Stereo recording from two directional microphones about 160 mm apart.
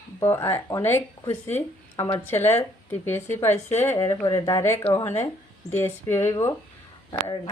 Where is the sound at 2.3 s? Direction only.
15° left (ahead or behind).